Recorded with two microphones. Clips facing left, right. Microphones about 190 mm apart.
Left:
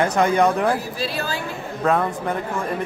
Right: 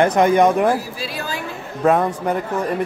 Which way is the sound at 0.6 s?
10° right (ahead or behind).